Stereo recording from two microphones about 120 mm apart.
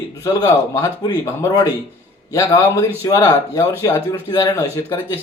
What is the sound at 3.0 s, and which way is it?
Speech, 25° left (ahead or behind).